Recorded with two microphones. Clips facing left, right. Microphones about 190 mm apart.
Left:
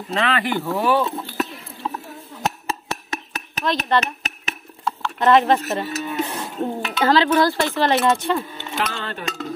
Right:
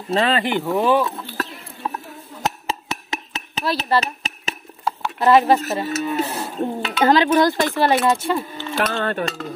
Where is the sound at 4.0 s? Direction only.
30° right (ahead or behind).